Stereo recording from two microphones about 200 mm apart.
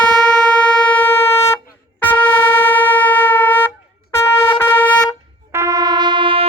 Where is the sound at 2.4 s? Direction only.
10° left (ahead or behind).